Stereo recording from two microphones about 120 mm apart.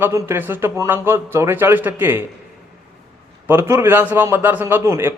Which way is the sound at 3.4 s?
20° right (ahead or behind).